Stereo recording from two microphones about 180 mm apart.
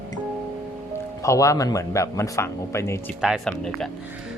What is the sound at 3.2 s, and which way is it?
Speech, centre (ahead or behind).